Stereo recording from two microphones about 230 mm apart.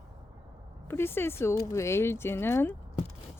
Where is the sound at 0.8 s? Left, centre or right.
Centre.